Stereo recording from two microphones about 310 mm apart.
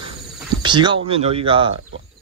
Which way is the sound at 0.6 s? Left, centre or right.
Centre.